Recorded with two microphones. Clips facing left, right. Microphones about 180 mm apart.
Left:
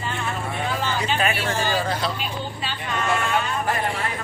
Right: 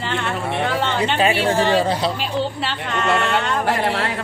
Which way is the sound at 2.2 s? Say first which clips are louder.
Right 7 dB; 75° right (ahead or behind).